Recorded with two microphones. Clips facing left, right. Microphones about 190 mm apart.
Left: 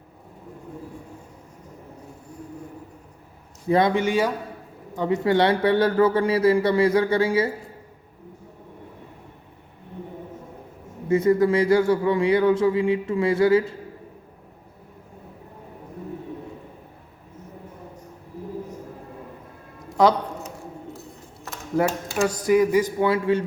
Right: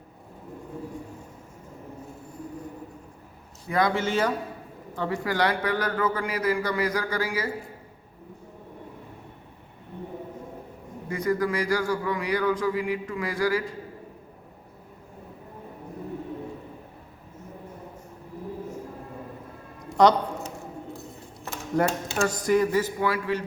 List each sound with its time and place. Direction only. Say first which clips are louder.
3.7 s speech: left 5 dB; 25° left (ahead or behind)
11.1 s speech: left 8 dB; 25° left (ahead or behind)
21.8 s speech: left 2 dB; 5° left (ahead or behind); by 23.4 s 25° left (ahead or behind)